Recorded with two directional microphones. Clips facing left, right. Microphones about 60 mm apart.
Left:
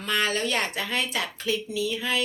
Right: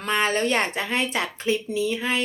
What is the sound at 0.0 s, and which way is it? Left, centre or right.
Speech, right.